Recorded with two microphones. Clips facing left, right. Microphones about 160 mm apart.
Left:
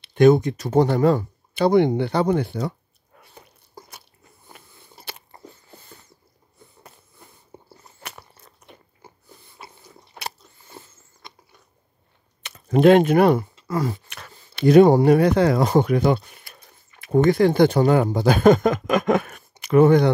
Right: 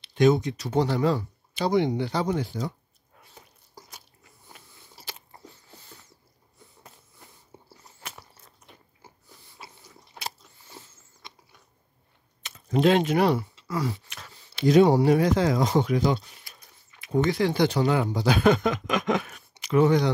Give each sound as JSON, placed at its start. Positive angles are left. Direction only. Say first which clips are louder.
{"t": 0.0, "sound": "speech", "louder": "left 6 dB", "side_deg": 55}
{"t": 3.2, "sound": "a sound", "louder": "left 4 dB", "side_deg": 65}
{"t": 4.5, "sound": "biting", "louder": "left 4 dB", "side_deg": 55}
{"t": 7.7, "sound": "biting", "louder": "left 3 dB", "side_deg": 60}
{"t": 9.0, "sound": "a sound", "louder": "left 4 dB", "side_deg": 60}
{"t": 9.6, "sound": "biting", "louder": "left 3 dB", "side_deg": 55}
{"t": 12.4, "sound": "speech", "louder": "left 7 dB", "side_deg": 60}